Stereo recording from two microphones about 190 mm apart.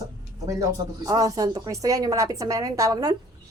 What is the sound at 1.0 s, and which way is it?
A woman's voice, 20° right (ahead or behind).